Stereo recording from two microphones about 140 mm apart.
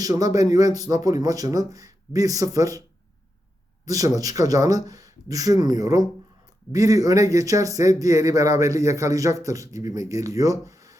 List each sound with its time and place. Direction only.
0.0 s speech: 25° right (ahead or behind)
3.8 s speech: 25° right (ahead or behind)